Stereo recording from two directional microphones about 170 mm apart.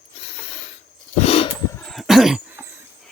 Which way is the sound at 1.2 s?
35° left (ahead or behind).